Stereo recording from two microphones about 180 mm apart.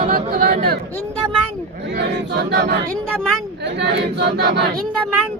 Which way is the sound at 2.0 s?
75° right (ahead or behind).